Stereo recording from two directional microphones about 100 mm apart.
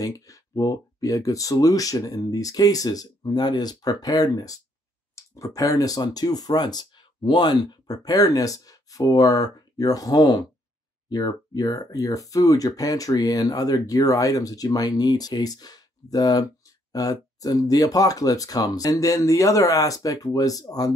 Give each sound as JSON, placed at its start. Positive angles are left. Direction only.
{"t": 0.0, "sound": "speech", "side_deg": 35}